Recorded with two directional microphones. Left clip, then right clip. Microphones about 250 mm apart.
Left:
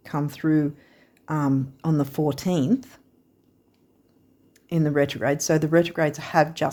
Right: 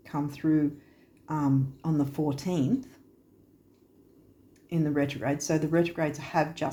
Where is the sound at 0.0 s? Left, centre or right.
Left.